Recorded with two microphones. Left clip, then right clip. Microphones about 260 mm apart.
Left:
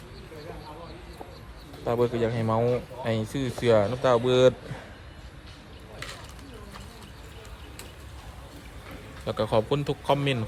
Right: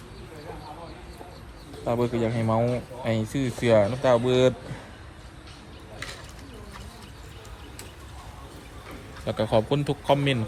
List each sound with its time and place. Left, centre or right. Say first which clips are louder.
1.8 s speech: left 1 dB; left
9.2 s a man's voice: right 1 dB; centre